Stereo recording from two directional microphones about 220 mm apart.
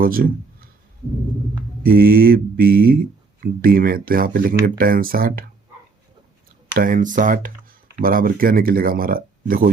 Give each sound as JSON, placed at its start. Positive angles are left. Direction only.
{"t": 0.0, "sound": "a sound", "side_deg": -40}
{"t": 1.8, "sound": "speech", "side_deg": -40}
{"t": 6.7, "sound": "speech", "side_deg": -40}